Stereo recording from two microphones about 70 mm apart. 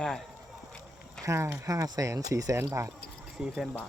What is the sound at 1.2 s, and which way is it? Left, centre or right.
Speech, right.